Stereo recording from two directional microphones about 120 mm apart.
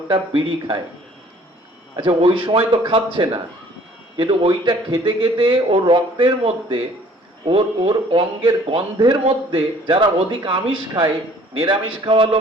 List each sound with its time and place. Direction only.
0.1 s speech: 40° right (ahead or behind)
2.0 s speech: 45° right (ahead or behind)